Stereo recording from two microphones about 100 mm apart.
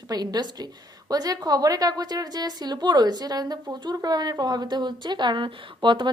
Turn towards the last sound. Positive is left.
turn(degrees=-55)  # may be behind; listen again after turning